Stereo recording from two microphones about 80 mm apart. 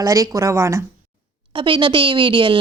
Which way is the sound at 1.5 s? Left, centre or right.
Right.